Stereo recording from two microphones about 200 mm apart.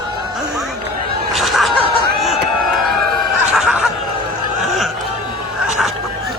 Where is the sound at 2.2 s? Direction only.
Centre (ahead or behind).